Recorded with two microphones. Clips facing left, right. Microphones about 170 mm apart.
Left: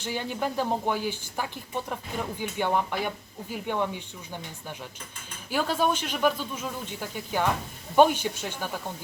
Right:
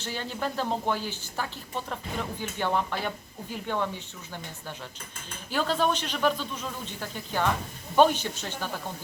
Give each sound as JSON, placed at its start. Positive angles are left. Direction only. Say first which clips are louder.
{"t": 0.0, "sound": "speech", "louder": "left 2 dB", "side_deg": 15}
{"t": 5.5, "sound": "speech", "louder": "left 1 dB", "side_deg": 10}